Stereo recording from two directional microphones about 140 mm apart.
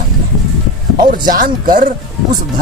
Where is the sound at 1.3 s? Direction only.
80° right.